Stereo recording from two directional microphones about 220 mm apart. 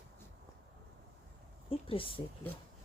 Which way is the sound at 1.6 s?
25° left (ahead or behind).